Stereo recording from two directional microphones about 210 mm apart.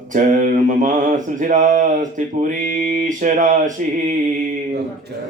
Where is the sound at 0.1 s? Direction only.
35° right (ahead or behind).